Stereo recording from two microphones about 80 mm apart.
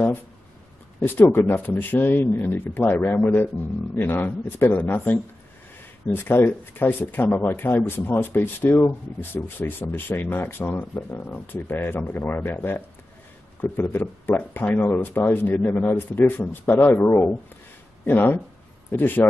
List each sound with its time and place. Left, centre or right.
1.0 s speech: left